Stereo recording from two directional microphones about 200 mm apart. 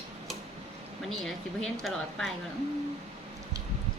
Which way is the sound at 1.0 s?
Centre (ahead or behind).